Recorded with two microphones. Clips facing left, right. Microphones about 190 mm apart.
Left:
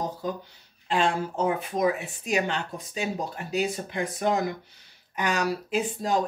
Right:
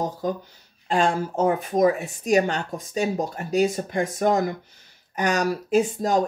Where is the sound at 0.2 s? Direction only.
45° right (ahead or behind).